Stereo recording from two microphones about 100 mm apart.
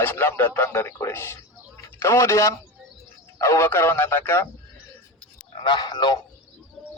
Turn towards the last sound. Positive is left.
turn(degrees=45)  # may be behind; listen again after turning